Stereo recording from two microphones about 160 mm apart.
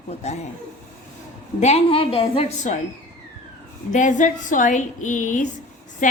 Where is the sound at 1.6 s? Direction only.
40° left (ahead or behind).